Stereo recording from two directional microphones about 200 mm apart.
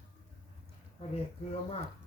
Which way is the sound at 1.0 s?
30° left (ahead or behind).